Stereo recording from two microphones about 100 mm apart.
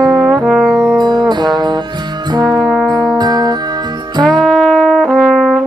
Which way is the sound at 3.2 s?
45° right (ahead or behind).